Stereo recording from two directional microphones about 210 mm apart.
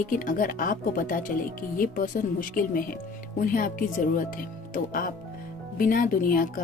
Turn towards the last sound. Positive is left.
turn(degrees=40)  # may be behind; listen again after turning